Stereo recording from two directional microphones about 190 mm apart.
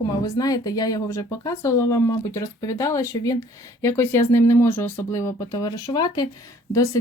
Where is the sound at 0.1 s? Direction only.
20° left (ahead or behind).